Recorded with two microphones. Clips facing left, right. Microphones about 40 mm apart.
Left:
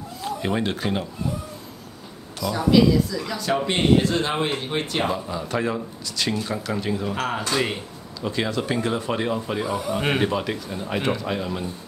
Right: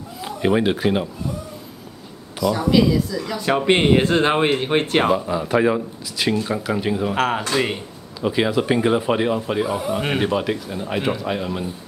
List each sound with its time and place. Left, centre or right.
0.2 s speech: centre
2.4 s speech: centre
3.3 s speech: right
5.0 s speech: right